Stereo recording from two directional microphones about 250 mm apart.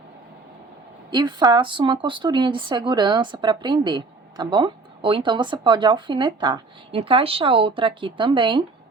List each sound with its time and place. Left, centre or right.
1.1 s speech: centre